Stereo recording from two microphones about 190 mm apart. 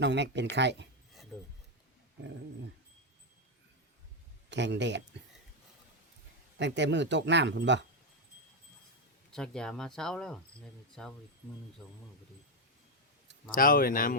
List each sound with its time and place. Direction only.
0.0 s speech: 65° right (ahead or behind)
1.3 s speech: 5° right (ahead or behind)
4.4 s speech: 65° right (ahead or behind)
6.6 s speech: 70° right (ahead or behind)
9.3 s speech: 5° left (ahead or behind)
13.5 s speech: 45° left (ahead or behind)